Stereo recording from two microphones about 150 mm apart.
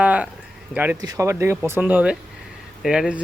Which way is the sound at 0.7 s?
10° right (ahead or behind).